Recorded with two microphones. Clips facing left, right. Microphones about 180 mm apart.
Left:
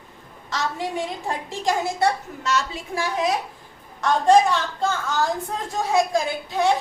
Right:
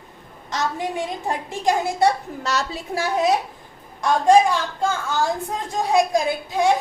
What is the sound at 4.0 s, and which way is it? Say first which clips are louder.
A woman's voice: right 1 dB; 10° right (ahead or behind).